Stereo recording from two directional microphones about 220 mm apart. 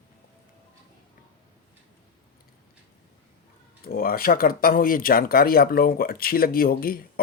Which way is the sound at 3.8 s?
40° left (ahead or behind).